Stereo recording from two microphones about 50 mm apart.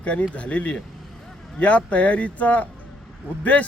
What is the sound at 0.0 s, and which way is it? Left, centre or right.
Speech, left.